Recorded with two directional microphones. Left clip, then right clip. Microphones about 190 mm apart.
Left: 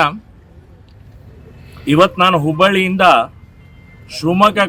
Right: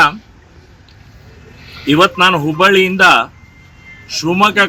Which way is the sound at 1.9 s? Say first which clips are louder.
Right 1 dB; 25° left (ahead or behind).